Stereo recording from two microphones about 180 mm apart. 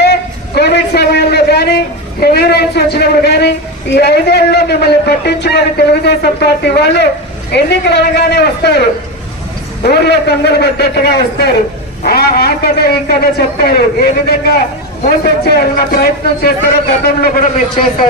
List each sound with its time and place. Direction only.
0.0 s a man's voice: 65° left (ahead or behind)
9.8 s a man's voice: 65° left (ahead or behind)